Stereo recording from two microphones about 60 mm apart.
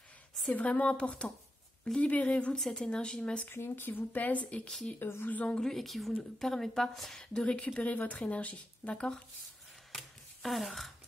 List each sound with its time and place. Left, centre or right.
0.5 s a woman's voice: left
3.4 s speech: left; by 4.7 s centre
4.9 s speech: left
5.6 s a woman's voice: centre
9.9 s a sound: centre